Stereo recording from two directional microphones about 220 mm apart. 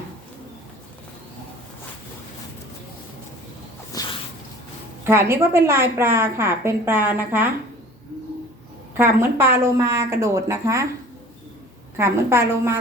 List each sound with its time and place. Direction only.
3.9 s a sound: 15° left (ahead or behind)
5.0 s a woman's voice: 10° right (ahead or behind)
9.0 s a woman's voice: 10° right (ahead or behind)
11.9 s a woman's voice: 10° right (ahead or behind)